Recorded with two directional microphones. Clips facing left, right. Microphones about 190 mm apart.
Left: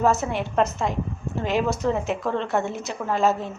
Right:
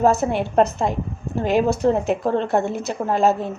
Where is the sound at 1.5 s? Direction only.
40° right (ahead or behind).